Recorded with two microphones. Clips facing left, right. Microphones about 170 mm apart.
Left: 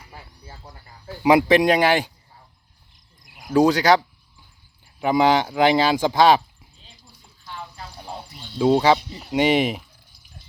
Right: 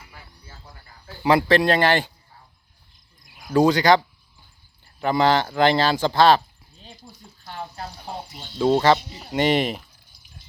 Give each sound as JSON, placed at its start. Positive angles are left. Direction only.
{"t": 1.0, "sound": "speech", "side_deg": 15}
{"t": 3.5, "sound": "speech", "side_deg": 5}
{"t": 6.8, "sound": "a sound", "side_deg": -55}
{"t": 8.5, "sound": "speech", "side_deg": 5}